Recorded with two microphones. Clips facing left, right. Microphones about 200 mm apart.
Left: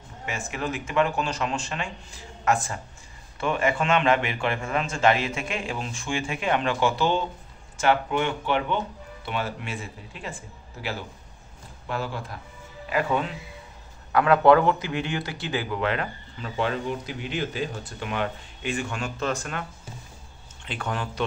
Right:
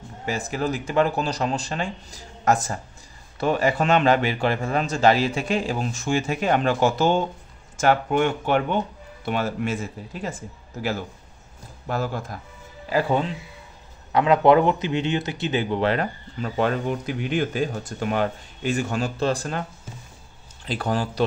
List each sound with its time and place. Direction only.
0.2 s speech: 35° right (ahead or behind)
12.9 s speech: 30° right (ahead or behind)
14.1 s speech: 20° right (ahead or behind)
20.6 s speech: 35° right (ahead or behind)